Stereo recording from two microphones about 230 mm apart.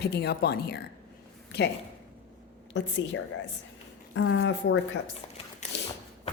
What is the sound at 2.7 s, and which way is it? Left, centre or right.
A woman's voice, left.